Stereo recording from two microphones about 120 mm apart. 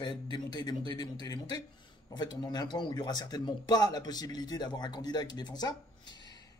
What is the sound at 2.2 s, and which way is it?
Speech, 35° left (ahead or behind).